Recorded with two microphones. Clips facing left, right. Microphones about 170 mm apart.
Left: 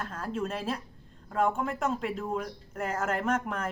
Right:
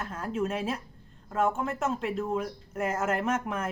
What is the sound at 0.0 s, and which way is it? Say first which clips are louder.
Speech: right 2 dB; 5° right (ahead or behind).